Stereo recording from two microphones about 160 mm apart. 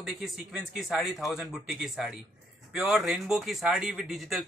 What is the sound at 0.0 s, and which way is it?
Speech, centre (ahead or behind).